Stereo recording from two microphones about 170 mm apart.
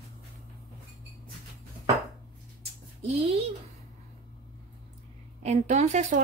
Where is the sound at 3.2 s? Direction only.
35° right (ahead or behind).